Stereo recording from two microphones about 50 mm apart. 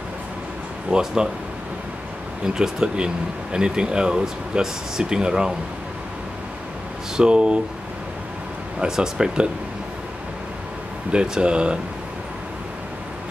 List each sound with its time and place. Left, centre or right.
0.8 s speech: centre
2.4 s speech: centre
7.2 s speech: centre
8.7 s speech: centre
11.1 s speech: right